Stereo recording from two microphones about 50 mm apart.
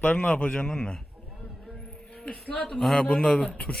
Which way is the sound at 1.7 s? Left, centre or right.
Centre.